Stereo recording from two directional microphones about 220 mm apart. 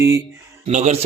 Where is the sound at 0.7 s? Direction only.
30° right (ahead or behind).